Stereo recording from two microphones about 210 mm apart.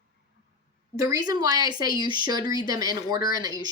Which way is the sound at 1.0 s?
15° right (ahead or behind).